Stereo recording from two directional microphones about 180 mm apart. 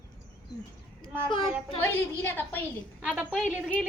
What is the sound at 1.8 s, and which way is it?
A woman's voice, 10° left (ahead or behind).